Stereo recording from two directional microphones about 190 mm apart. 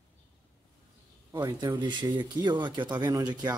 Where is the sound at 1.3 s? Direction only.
20° right (ahead or behind).